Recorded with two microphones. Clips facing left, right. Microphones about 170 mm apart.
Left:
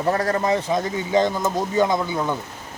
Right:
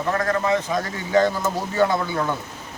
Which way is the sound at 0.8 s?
20° left (ahead or behind).